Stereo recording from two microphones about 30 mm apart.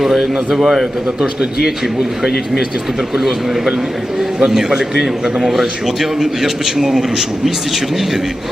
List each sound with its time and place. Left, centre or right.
0.0 s a man's voice: centre
1.0 s a man's voice: right
3.2 s a man's voice: centre